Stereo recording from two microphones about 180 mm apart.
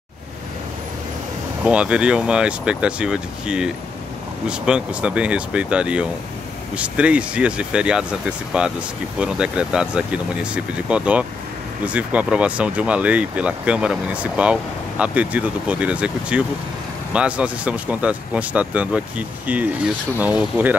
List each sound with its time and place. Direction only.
1.6 s speech: 5° right (ahead or behind)